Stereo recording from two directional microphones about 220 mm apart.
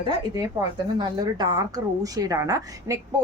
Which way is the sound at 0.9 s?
20° right (ahead or behind).